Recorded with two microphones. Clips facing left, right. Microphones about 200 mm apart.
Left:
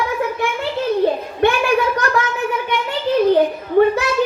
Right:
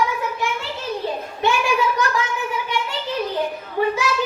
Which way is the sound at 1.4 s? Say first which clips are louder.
Left 4 dB; 60° left (ahead or behind).